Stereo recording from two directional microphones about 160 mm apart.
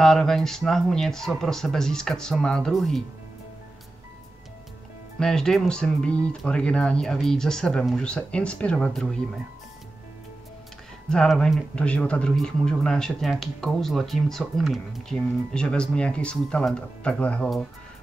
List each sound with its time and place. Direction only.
0.0 s speech: 5° left (ahead or behind)
5.2 s speech: 5° left (ahead or behind)
11.1 s speech: 5° left (ahead or behind)